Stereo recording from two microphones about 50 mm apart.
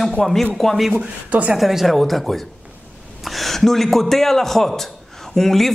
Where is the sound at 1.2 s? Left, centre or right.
Right.